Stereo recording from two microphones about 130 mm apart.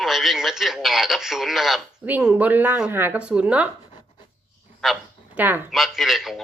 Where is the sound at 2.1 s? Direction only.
15° right (ahead or behind).